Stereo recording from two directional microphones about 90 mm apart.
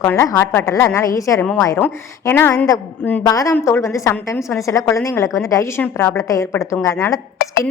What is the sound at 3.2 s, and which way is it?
A woman's voice, 40° left (ahead or behind).